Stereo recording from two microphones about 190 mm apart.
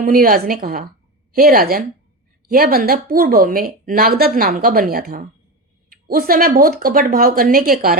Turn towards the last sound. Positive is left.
turn(degrees=-50)  # may be behind; listen again after turning